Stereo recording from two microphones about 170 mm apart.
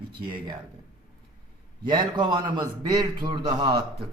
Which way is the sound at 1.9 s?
25° right (ahead or behind).